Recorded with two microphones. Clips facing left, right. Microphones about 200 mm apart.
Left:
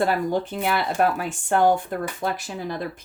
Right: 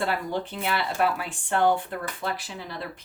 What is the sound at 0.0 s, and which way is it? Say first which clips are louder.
Speech: left 6 dB; 45° left (ahead or behind).